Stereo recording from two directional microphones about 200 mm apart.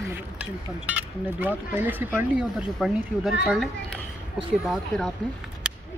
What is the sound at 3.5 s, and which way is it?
Stir, centre (ahead or behind).